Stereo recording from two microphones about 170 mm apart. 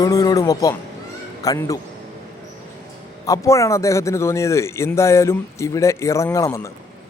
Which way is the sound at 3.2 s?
20° left (ahead or behind).